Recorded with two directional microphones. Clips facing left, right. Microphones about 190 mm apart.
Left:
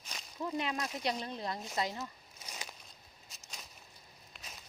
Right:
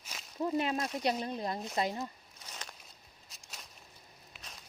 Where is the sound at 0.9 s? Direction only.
5° right (ahead or behind).